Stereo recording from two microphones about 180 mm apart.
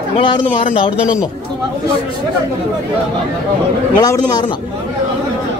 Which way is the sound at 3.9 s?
20° left (ahead or behind).